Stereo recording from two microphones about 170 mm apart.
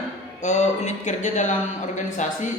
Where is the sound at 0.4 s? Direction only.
45° left (ahead or behind).